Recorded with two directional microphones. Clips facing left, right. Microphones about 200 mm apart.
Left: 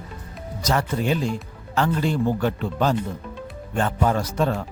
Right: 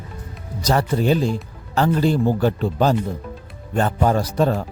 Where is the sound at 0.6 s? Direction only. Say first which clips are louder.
Right 4 dB; 35° right (ahead or behind).